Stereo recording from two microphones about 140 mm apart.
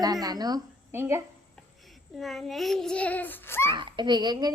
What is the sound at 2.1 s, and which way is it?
A child's voice, centre (ahead or behind).